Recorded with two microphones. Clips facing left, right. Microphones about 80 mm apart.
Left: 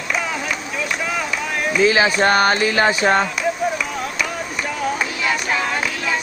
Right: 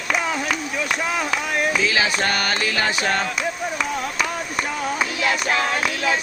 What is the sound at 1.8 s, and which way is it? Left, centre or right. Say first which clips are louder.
Music: left 6 dB; left.